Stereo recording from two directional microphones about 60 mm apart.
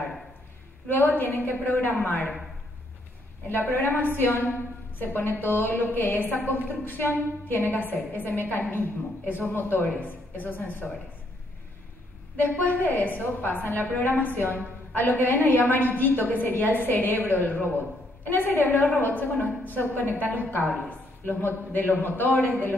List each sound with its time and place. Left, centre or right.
0.8 s a woman's voice: left
3.7 s a woman's voice: left
12.4 s a woman's voice: left